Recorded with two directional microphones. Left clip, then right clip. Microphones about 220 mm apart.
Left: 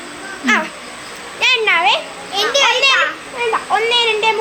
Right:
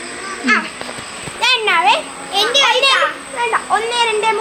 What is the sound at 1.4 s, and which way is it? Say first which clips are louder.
Speech: even; 15° left (ahead or behind).